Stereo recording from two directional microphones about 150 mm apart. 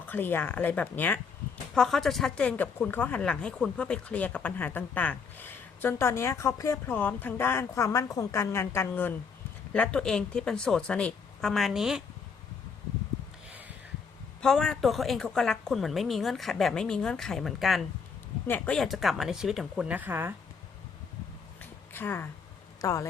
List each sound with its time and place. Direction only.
0.0 s a woman's voice: 15° left (ahead or behind); by 12.0 s 5° right (ahead or behind)
14.4 s a woman's voice: 5° left (ahead or behind)
18.4 s a woman's voice: 10° left (ahead or behind); by 20.3 s 15° right (ahead or behind)
21.6 s a sound: 15° left (ahead or behind)
22.8 s speech: 20° left (ahead or behind)